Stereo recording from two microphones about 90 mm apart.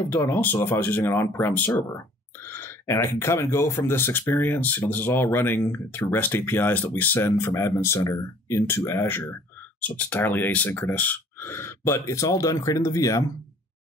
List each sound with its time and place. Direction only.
0.1 s speech: 25° left (ahead or behind)
2.5 s speech: 30° left (ahead or behind)